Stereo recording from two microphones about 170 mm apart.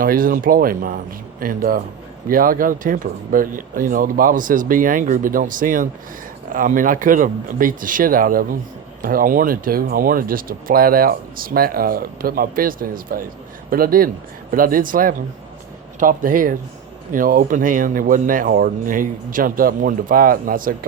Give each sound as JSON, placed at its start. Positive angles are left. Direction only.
{"t": 0.0, "sound": "speech", "side_deg": -55}